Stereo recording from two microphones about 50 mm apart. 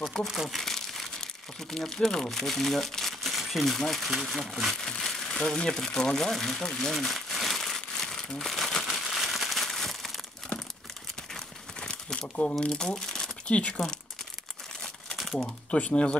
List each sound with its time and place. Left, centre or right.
0.0 s speech: centre
0.6 s crumpling: centre
4.1 s speech: centre
8.8 s crushing: centre
11.9 s speech: left
13.5 s speech: left
15.3 s speech: left